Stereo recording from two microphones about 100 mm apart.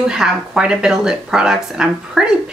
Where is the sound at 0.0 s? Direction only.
5° right (ahead or behind).